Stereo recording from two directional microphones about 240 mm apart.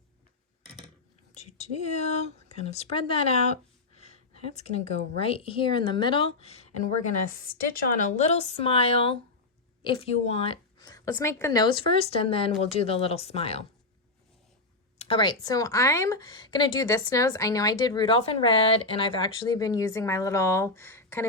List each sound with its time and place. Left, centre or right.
1.3 s a woman's voice: left
7.3 s a woman's voice: left
14.9 s speech: left